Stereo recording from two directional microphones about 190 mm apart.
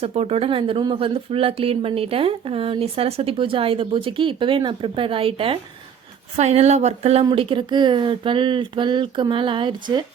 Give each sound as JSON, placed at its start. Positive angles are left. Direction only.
{"t": 0.0, "sound": "speech", "side_deg": -35}